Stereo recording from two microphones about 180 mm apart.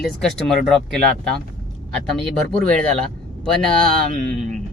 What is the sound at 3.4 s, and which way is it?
Speech, 5° left (ahead or behind).